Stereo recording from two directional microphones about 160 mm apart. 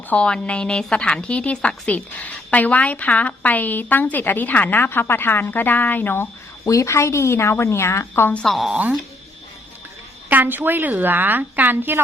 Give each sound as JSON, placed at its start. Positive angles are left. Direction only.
{"t": 0.1, "sound": "a woman's voice", "side_deg": 5}
{"t": 10.2, "sound": "a woman's voice", "side_deg": -10}